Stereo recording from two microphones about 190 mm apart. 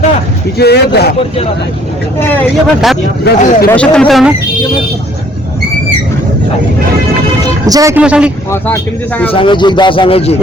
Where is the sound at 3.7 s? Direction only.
5° left (ahead or behind).